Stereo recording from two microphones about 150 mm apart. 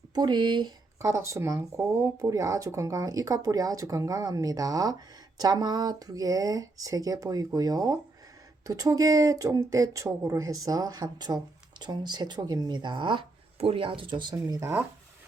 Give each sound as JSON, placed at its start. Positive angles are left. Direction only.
{"t": 0.1, "sound": "speech", "side_deg": -30}
{"t": 1.0, "sound": "speech", "side_deg": -20}